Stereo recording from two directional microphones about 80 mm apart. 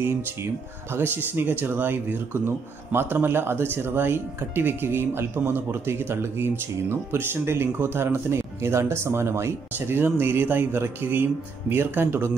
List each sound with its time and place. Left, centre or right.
0.9 s speech: right